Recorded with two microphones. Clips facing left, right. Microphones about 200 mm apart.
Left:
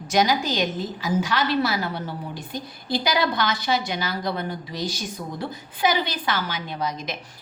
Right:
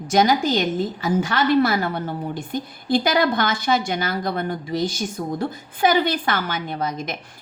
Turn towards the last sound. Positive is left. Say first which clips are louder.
# right 3 dB
turn(degrees=-55)  # may be behind; listen again after turning